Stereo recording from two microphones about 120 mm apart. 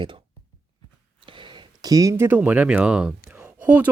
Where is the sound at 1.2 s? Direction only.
45° right (ahead or behind); by 3.5 s 10° right (ahead or behind).